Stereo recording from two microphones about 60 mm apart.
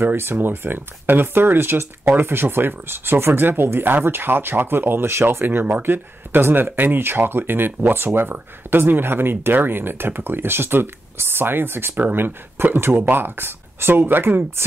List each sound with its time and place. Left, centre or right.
0.0 s speech: right